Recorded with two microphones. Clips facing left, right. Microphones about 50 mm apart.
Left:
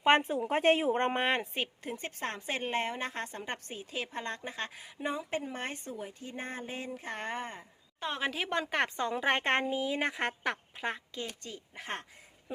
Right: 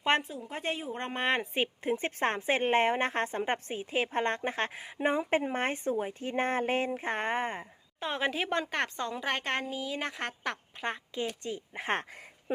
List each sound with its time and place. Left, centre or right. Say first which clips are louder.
0.3 s speech: left 9 dB; left
1.2 s a woman's voice: right 1 dB; centre
1.5 s a woman's voice: right 5 dB; centre
1.9 s speech: right 8 dB; right
4.0 s speech: right 9 dB; right
6.3 s speech: right 12 dB; right
7.9 s a woman's voice: right 3 dB; centre
8.8 s a woman's voice: left 2 dB; centre
11.1 s a woman's voice: right 6 dB; centre